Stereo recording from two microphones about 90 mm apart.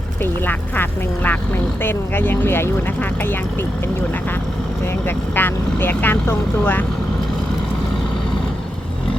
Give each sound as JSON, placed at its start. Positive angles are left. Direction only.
{"t": 0.2, "sound": "speech", "side_deg": 20}
{"t": 5.0, "sound": "speech", "side_deg": 25}